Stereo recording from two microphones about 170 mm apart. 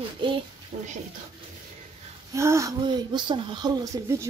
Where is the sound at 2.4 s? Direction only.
15° right (ahead or behind).